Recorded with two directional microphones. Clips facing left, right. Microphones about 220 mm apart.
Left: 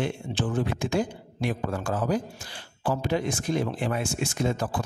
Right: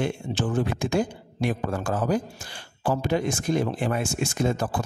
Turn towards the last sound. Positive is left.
turn(degrees=-45)  # may be behind; listen again after turning